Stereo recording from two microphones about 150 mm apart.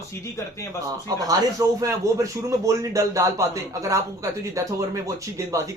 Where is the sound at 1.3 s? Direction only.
25° right (ahead or behind).